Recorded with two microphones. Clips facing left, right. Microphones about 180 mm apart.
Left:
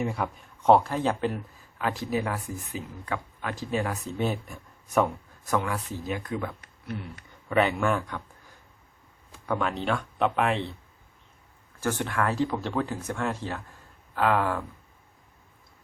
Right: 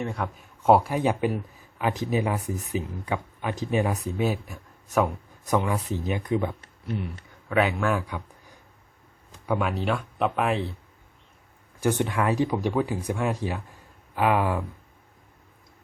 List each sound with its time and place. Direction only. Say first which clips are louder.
0.0 s speech: left 1 dB; centre (ahead or behind); by 3.9 s 20° right (ahead or behind)
3.9 s speech: right 2 dB; 5° right (ahead or behind)
5.5 s speech: right 3 dB; 15° right (ahead or behind)
7.5 s speech: even; centre (ahead or behind)
9.3 s speech: right 2 dB; 10° right (ahead or behind)
11.8 s speech: right 3 dB; 15° right (ahead or behind)